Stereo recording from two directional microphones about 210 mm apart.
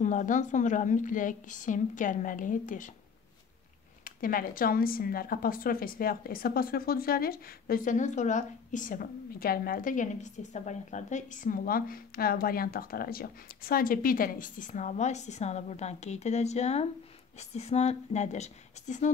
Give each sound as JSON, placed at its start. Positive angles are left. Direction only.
{"t": 0.0, "sound": "a woman's voice", "side_deg": 35}
{"t": 4.0, "sound": "a woman's voice", "side_deg": 40}